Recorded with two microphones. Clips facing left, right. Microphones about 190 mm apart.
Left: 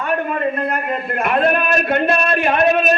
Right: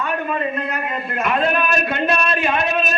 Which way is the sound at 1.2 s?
55° left (ahead or behind).